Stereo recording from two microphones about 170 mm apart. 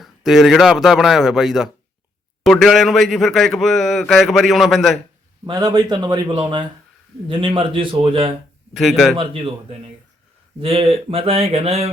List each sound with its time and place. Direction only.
0.0 s a man's voice: centre (ahead or behind)
5.5 s a man's voice: 20° right (ahead or behind)
8.7 s a man's voice: centre (ahead or behind)
9.1 s speech: 30° right (ahead or behind)